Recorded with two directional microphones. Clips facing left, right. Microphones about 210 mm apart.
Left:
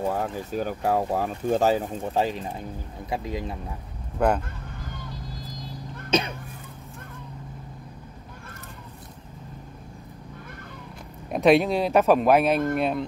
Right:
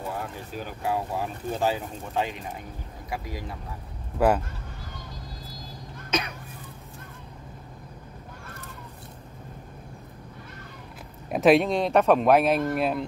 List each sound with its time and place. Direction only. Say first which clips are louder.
0.1 s speech: left 6 dB; 45° left (ahead or behind)
3.1 s speech: left 5 dB; 25° left (ahead or behind)
4.2 s speech: right 1 dB; 5° right (ahead or behind)
6.0 s a sound: left 5 dB; 30° left (ahead or behind)
11.2 s speech: even; centre (ahead or behind)